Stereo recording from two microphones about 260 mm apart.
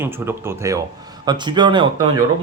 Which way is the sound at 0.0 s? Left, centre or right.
Centre.